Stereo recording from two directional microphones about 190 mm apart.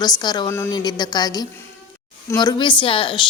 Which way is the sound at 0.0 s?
20° left (ahead or behind).